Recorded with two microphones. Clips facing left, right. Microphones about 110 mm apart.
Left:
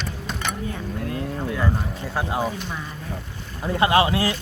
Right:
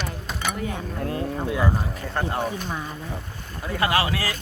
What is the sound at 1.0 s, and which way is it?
Speech, 30° right (ahead or behind).